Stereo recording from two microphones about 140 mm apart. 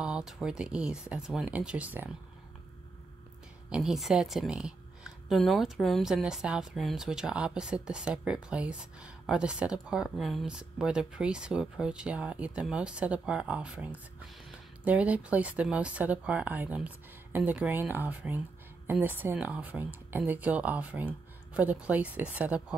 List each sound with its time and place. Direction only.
0.0 s speech: 5° right (ahead or behind)
3.7 s speech: centre (ahead or behind)
14.9 s speech: 10° right (ahead or behind)